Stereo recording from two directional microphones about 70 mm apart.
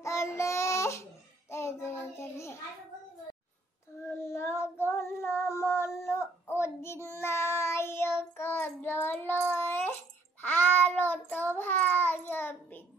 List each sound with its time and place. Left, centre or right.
0.0 s child singing: left
4.1 s child singing: left
6.0 s a sound: left
7.2 s child singing: left